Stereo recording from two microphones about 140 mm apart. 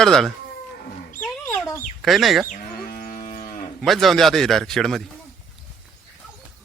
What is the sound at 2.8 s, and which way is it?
Moo, 90° left.